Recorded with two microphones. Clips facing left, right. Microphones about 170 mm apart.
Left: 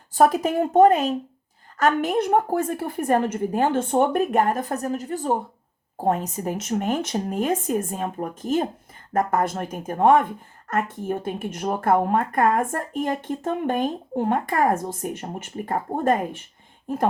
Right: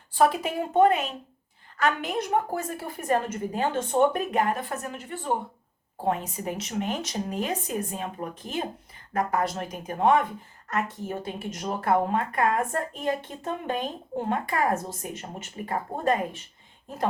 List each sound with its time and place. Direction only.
0.1 s a woman's voice: 45° left (ahead or behind)